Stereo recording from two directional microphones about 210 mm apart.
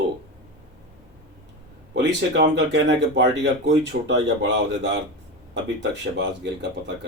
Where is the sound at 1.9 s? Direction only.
55° right (ahead or behind).